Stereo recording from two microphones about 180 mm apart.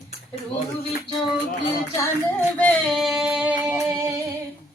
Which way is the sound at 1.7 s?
15° left (ahead or behind).